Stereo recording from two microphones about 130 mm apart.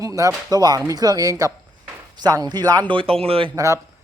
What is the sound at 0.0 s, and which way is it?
A man's voice, 25° right (ahead or behind).